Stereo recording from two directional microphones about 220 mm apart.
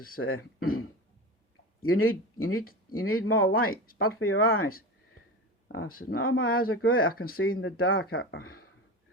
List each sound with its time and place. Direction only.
0.2 s speech: 70° left (ahead or behind)
3.8 s speech: 40° left (ahead or behind)
4.2 s speech: 75° left (ahead or behind)
5.6 s speech: 60° left (ahead or behind)
6.0 s speech: 45° left (ahead or behind)
7.6 s speech: 70° left (ahead or behind)
8.2 s speech: 50° left (ahead or behind)